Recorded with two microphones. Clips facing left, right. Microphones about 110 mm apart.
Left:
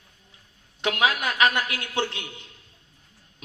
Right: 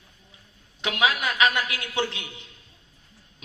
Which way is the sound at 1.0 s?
50° left (ahead or behind).